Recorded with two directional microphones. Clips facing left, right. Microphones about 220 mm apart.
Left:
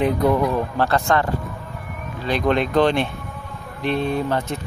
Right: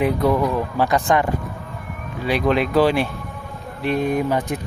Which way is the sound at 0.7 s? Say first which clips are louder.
Right 3 dB; 15° right (ahead or behind).